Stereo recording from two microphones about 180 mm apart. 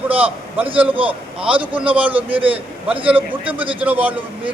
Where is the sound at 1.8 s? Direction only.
5° right (ahead or behind).